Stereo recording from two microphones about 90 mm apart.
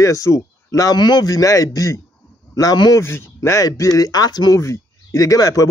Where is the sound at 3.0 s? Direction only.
30° left (ahead or behind); by 4.6 s 45° left (ahead or behind).